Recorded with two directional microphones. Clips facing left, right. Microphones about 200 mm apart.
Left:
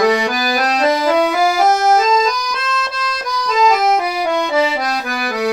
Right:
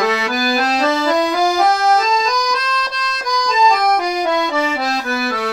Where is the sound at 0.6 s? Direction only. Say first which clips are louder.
Left 3 dB; 10° left (ahead or behind).